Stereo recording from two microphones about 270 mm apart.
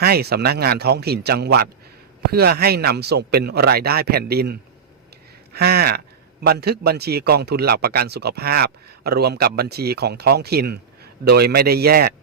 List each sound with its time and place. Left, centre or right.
0.0 s a man's voice: right
5.5 s a man's voice: right